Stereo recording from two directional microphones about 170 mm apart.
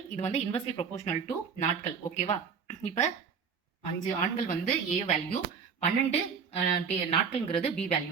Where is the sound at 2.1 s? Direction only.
45° left (ahead or behind).